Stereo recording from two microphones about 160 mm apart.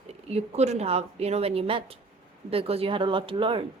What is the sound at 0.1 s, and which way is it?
A woman's voice, 40° right (ahead or behind).